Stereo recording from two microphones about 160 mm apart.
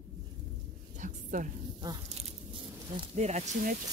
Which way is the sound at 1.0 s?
50° right (ahead or behind).